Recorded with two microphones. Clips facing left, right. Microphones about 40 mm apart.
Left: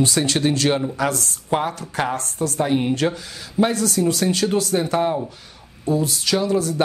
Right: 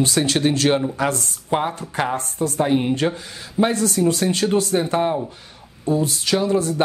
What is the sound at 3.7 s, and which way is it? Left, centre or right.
Speech, right.